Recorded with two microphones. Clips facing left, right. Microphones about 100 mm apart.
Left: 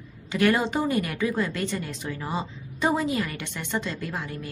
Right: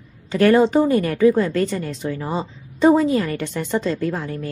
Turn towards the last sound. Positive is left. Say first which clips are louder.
# right 9 dB
turn(degrees=-40)  # may be behind; listen again after turning